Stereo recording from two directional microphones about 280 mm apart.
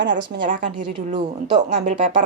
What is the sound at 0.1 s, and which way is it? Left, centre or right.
Speech, right.